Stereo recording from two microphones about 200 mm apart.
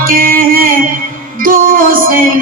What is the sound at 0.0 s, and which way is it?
Music, 45° right (ahead or behind).